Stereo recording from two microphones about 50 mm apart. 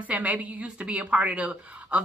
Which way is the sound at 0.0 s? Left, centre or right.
Right.